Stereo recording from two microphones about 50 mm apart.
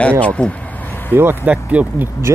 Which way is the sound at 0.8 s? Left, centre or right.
Left.